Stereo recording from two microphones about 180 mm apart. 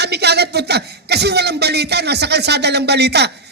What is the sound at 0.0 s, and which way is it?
Speech, 65° right (ahead or behind).